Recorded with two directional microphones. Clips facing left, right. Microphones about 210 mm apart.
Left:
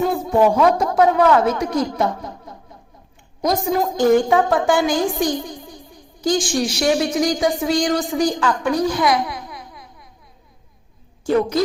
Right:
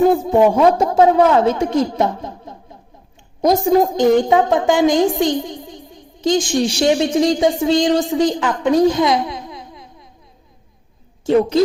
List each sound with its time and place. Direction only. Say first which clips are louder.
0.3 s a woman's voice: right 3 dB; 20° right (ahead or behind)
11.3 s a woman's voice: right 4 dB; 25° right (ahead or behind)